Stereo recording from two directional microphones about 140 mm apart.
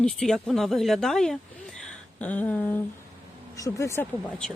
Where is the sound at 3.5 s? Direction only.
25° left (ahead or behind).